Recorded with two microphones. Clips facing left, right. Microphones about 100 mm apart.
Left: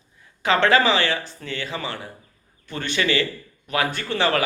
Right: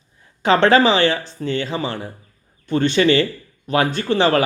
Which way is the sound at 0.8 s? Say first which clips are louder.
Right 5 dB; 25° right (ahead or behind).